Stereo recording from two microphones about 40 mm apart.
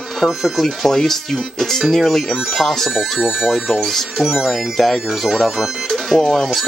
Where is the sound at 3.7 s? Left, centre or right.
Centre.